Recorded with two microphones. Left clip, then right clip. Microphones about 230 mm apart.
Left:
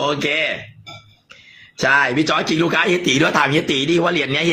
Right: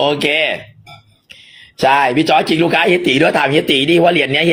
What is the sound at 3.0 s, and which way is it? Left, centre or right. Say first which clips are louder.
Speech: right 3 dB; centre.